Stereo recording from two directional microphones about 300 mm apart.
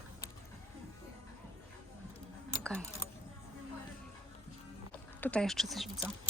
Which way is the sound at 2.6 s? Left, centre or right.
Centre.